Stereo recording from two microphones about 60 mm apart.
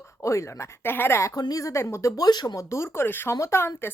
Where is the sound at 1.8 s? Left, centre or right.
Left.